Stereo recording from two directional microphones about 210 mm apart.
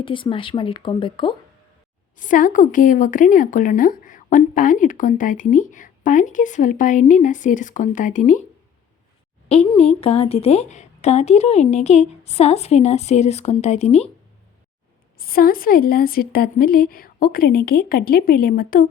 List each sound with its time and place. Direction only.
0.0 s speech: 25° left (ahead or behind)
2.1 s a woman's voice: 40° left (ahead or behind)
9.5 s a woman's voice: 30° left (ahead or behind)
15.2 s a woman's voice: 45° left (ahead or behind)